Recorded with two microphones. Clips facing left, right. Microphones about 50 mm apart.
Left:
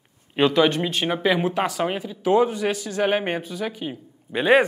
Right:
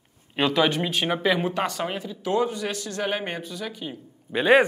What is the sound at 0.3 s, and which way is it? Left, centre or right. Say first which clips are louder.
Speech: left 3 dB; centre.